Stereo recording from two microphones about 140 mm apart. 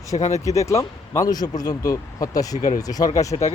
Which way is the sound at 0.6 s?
20° left (ahead or behind).